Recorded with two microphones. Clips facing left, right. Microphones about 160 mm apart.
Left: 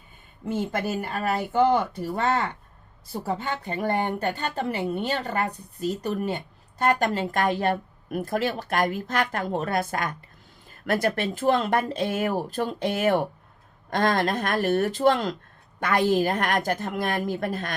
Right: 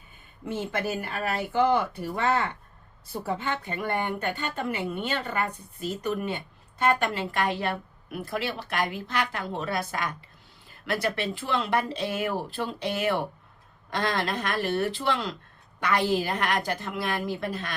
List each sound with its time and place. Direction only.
1.0 s a woman's voice: 45° left (ahead or behind)